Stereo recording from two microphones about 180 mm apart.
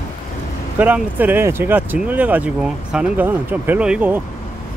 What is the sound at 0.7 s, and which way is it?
Speech, 10° right (ahead or behind).